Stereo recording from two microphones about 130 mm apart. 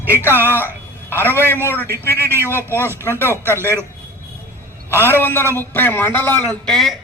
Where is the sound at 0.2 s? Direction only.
15° left (ahead or behind).